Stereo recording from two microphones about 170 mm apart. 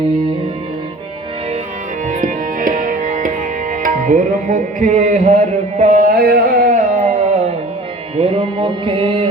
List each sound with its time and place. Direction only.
2.0 s music: 50° right (ahead or behind); by 9.3 s 35° right (ahead or behind)